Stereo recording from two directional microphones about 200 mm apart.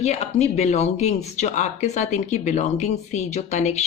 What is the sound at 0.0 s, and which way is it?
Speech, 35° left (ahead or behind).